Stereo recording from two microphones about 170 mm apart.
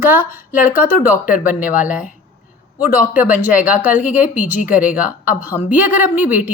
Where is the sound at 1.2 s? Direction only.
50° left (ahead or behind).